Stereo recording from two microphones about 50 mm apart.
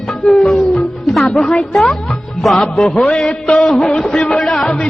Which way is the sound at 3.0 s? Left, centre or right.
Centre.